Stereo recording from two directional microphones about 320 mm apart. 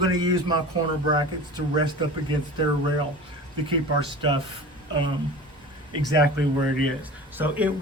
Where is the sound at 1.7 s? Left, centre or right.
Centre.